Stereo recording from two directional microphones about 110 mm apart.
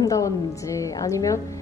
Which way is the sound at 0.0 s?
30° left (ahead or behind).